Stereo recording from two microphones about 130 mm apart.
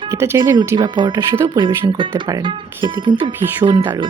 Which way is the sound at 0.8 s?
35° right (ahead or behind).